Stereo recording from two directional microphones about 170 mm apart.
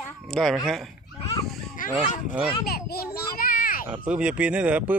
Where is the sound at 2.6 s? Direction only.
65° left (ahead or behind).